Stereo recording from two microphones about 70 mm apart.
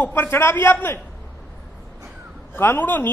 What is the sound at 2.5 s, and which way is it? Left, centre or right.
Speech, left.